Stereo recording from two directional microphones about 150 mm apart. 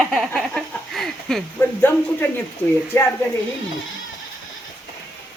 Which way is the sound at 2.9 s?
15° left (ahead or behind).